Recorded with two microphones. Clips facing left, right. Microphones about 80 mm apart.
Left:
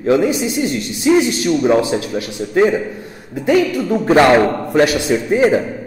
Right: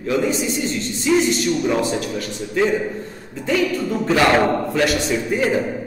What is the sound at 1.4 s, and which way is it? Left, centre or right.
Speech, left.